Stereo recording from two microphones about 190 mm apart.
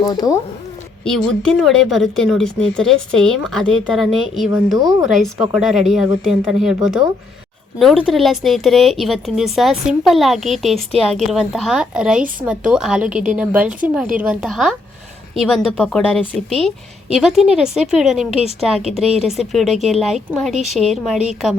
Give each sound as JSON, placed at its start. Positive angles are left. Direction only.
{"t": 0.0, "sound": "speech", "side_deg": 20}
{"t": 1.0, "sound": "a woman's voice", "side_deg": 5}
{"t": 4.8, "sound": "speech", "side_deg": -20}
{"t": 5.0, "sound": "a woman's voice", "side_deg": 0}